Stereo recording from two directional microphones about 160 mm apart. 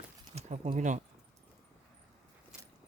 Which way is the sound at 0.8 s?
50° right (ahead or behind).